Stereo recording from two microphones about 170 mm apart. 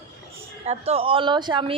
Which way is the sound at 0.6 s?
35° right (ahead or behind).